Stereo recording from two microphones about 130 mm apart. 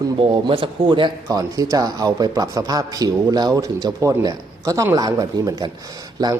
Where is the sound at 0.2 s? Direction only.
40° right (ahead or behind).